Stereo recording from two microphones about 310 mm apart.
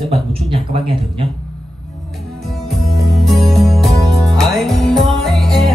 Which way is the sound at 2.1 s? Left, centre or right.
Centre.